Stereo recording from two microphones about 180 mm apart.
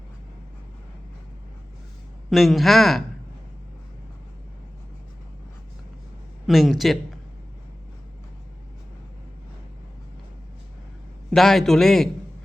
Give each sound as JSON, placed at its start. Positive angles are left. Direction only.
{"t": 2.3, "sound": "speech", "side_deg": 0}
{"t": 6.5, "sound": "speech", "side_deg": 0}
{"t": 11.3, "sound": "speech", "side_deg": 0}